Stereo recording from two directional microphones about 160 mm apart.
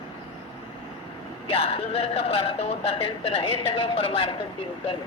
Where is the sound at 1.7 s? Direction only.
40° left (ahead or behind).